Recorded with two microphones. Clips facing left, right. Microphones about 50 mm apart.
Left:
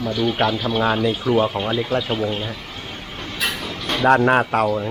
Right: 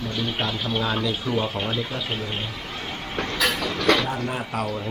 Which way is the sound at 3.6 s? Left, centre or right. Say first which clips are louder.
Right 5 dB; right.